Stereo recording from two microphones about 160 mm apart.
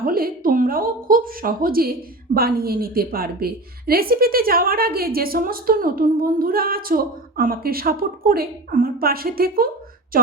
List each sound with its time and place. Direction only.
0.0 s a woman's voice: 65° right (ahead or behind)